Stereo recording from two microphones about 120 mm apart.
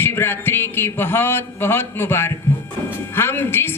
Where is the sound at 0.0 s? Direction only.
20° left (ahead or behind).